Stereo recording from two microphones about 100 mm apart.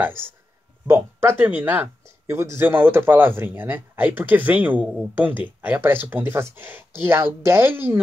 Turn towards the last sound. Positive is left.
turn(degrees=-20)  # may be behind; listen again after turning